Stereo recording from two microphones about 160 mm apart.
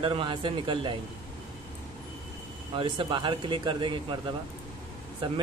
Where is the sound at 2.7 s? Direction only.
30° right (ahead or behind).